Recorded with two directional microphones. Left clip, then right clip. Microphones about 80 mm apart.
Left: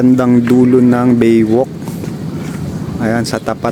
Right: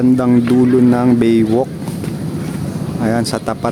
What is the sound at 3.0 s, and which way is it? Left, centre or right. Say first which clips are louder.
Speech: left 2 dB; centre.